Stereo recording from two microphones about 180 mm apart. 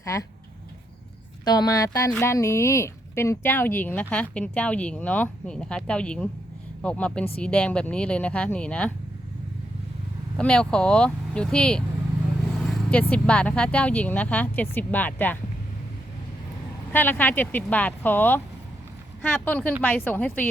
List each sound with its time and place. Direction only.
0.0 s speech: 15° left (ahead or behind)
1.5 s speech: 20° left (ahead or behind)
10.3 s speech: 5° left (ahead or behind)
16.9 s speech: 10° left (ahead or behind)